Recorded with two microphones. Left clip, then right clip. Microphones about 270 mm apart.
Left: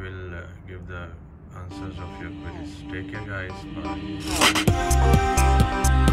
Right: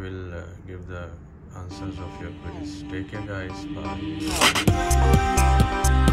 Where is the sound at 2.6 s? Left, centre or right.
Centre.